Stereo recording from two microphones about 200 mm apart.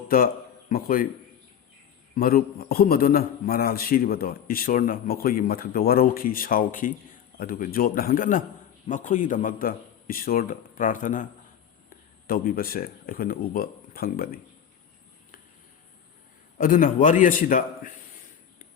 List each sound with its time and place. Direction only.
0.7 s a man's voice: 45° left (ahead or behind)
2.1 s a man's voice: 50° left (ahead or behind)
16.6 s a man's voice: 45° left (ahead or behind)